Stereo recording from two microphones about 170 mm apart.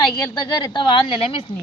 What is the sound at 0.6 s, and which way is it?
Speech, 25° left (ahead or behind).